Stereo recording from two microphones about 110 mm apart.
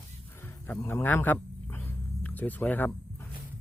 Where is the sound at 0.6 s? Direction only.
15° left (ahead or behind).